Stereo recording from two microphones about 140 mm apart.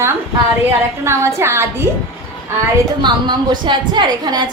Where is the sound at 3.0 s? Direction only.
35° right (ahead or behind).